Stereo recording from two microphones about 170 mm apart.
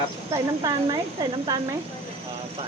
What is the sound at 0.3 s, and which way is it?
Speech, 25° right (ahead or behind).